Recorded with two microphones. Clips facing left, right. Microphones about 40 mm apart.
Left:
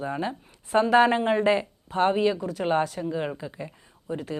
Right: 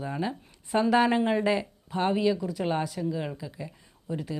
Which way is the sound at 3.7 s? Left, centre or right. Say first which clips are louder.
Left 2 dB; centre.